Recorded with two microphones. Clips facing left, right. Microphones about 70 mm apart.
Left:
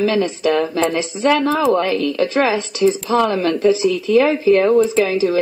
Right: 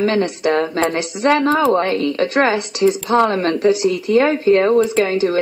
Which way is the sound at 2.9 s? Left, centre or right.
Right.